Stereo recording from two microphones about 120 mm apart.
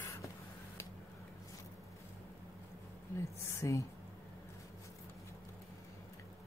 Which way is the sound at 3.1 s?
25° left (ahead or behind).